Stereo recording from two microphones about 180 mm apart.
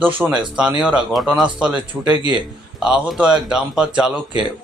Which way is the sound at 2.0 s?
25° right (ahead or behind).